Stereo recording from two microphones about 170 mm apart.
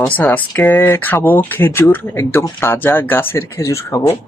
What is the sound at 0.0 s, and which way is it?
Speech, 10° left (ahead or behind).